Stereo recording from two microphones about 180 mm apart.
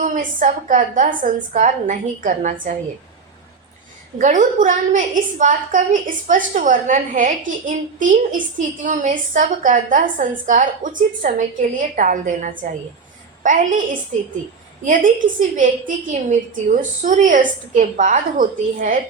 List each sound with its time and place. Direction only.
0.0 s a woman's voice: 45° right (ahead or behind)
4.2 s a woman's voice: 45° right (ahead or behind)
14.8 s a woman's voice: 45° right (ahead or behind)